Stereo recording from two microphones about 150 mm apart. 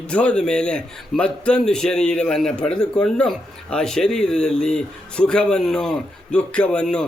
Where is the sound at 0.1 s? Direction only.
10° left (ahead or behind).